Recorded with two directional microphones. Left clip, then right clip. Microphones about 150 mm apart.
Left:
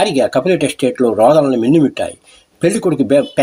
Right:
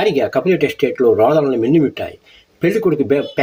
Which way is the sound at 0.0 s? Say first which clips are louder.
Left 2 dB; 30° left (ahead or behind).